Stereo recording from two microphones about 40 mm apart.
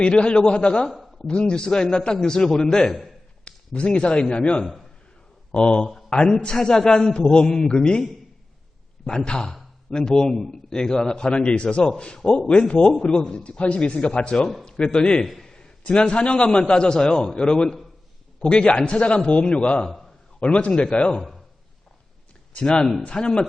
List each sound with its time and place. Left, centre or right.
0.0 s a man's voice: left
0.9 s a sound: centre
1.3 s a man's voice: left
3.4 s a man's voice: left
9.0 s a man's voice: left
22.5 s a man's voice: left